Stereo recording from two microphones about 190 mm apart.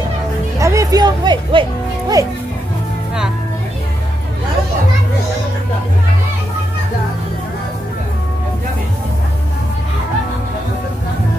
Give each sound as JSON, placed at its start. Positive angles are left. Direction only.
{"t": 0.6, "sound": "speech", "side_deg": -15}